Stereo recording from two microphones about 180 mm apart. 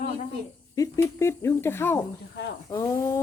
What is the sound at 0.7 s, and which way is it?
Speech, 15° left (ahead or behind).